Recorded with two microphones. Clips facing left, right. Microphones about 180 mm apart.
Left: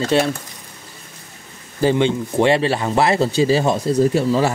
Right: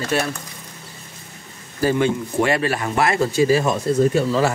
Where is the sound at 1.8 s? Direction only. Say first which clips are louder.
Left 2 dB; 25° left (ahead or behind).